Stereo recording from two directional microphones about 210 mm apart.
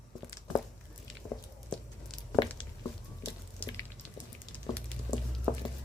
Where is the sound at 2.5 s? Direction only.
20° left (ahead or behind).